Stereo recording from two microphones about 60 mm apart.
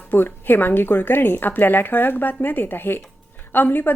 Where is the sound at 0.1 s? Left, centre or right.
Left.